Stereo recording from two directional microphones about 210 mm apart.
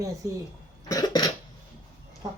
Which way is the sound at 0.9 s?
20° left (ahead or behind).